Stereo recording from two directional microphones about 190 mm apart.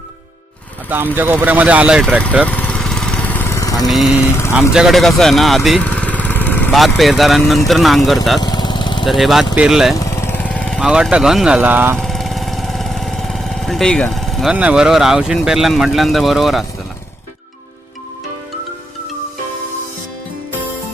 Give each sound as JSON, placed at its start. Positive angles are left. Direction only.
{"t": 0.9, "sound": "speech", "side_deg": -10}
{"t": 2.5, "sound": "lawn mower", "side_deg": 5}
{"t": 3.8, "sound": "speech", "side_deg": 0}
{"t": 8.4, "sound": "lawn mower", "side_deg": 20}
{"t": 9.0, "sound": "speech", "side_deg": 0}
{"t": 10.0, "sound": "speech", "side_deg": 15}
{"t": 11.9, "sound": "speech", "side_deg": 0}